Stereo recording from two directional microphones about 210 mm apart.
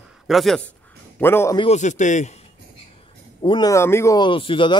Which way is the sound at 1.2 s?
10° left (ahead or behind).